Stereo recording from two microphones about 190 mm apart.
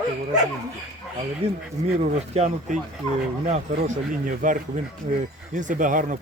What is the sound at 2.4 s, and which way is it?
Speech, 35° right (ahead or behind).